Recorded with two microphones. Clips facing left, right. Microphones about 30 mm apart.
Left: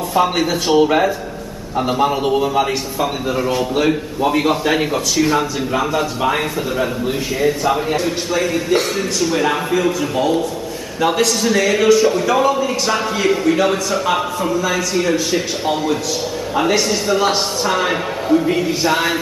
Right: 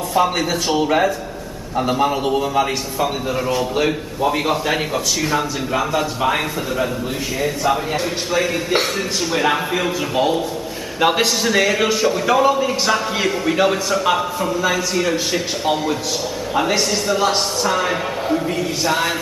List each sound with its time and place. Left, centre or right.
0.1 s a man's voice: centre; by 11.2 s right
11.4 s speech: centre
15.3 s a man's voice: centre